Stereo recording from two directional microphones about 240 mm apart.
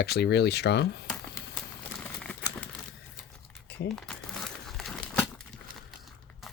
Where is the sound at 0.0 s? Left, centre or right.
Left.